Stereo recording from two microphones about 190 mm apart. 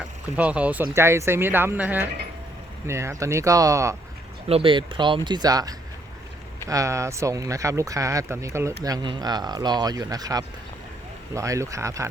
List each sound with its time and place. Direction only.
0.3 s speech: 5° right (ahead or behind)
4.4 s speech: 30° right (ahead or behind)